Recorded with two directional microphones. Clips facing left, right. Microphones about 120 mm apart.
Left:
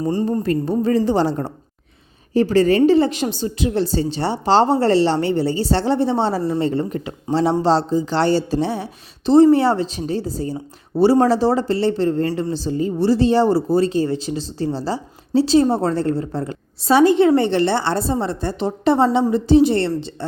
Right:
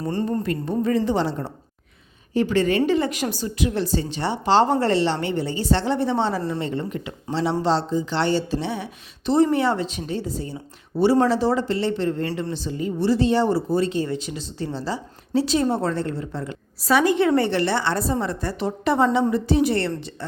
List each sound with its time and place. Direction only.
0.0 s speech: 15° left (ahead or behind)
0.4 s a woman's voice: 35° left (ahead or behind)